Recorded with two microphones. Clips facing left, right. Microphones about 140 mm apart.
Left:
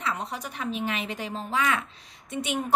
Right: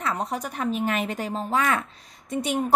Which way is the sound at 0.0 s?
45° right (ahead or behind).